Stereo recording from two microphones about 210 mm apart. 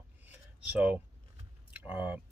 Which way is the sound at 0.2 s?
5° right (ahead or behind).